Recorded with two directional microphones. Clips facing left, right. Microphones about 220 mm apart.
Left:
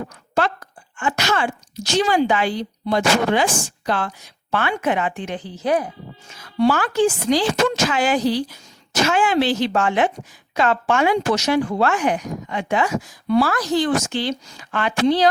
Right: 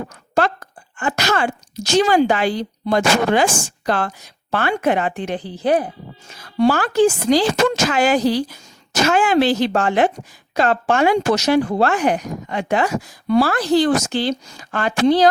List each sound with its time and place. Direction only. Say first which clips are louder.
0.9 s speech: right 2 dB; 40° right (ahead or behind)
12.9 s speech: right 1 dB; 65° right (ahead or behind)
13.2 s a woman's voice: right 2 dB; 45° right (ahead or behind)
13.5 s speech: right 4 dB; 30° right (ahead or behind)